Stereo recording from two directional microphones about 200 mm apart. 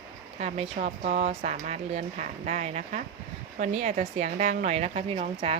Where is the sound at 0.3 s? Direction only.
35° right (ahead or behind).